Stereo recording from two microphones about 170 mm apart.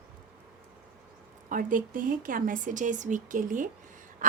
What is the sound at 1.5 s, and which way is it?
A woman's voice, 55° right (ahead or behind).